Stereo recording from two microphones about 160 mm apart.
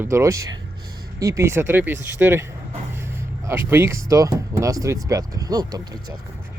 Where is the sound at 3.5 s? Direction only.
15° right (ahead or behind).